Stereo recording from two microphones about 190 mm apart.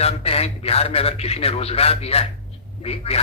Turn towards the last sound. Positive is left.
turn(degrees=30)  # may be behind; listen again after turning